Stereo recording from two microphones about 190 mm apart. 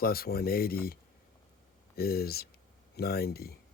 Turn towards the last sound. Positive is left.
turn(degrees=55)  # may be behind; listen again after turning